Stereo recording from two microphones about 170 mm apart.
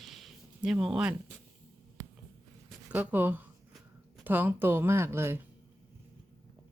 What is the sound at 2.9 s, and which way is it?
Speech, 10° right (ahead or behind).